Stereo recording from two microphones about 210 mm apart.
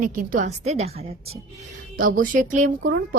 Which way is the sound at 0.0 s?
40° right (ahead or behind).